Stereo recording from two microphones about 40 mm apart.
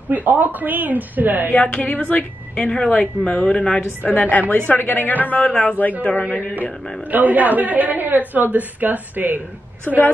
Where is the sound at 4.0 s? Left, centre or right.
Left.